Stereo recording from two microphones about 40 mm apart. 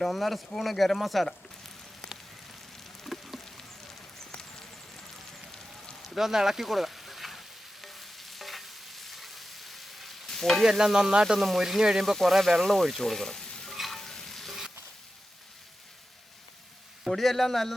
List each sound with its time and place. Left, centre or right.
0.0 s speech: centre
3.1 s a sound: centre
3.4 s a sound: centre
4.3 s clip-clop: centre
5.1 s fire: centre
6.0 s sizzle: centre
10.3 s stir: centre
10.6 s stir: centre
11.3 s speech: centre
11.8 s stir: centre
12.1 s speech: centre
13.9 s stir: centre
17.0 s speech: centre